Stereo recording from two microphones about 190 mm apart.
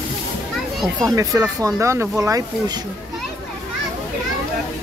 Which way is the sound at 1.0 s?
15° right (ahead or behind).